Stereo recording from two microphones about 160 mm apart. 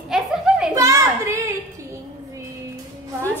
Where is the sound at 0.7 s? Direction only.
20° right (ahead or behind).